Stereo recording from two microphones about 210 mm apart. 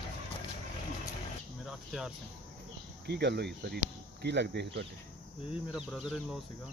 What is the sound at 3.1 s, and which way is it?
Speech, 55° right (ahead or behind).